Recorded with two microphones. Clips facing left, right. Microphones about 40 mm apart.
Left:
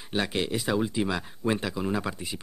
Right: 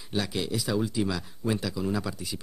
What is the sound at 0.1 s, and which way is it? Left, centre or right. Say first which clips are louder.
Speech: left 2 dB; left.